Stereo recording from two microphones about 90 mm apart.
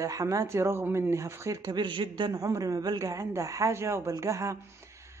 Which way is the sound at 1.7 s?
60° right (ahead or behind).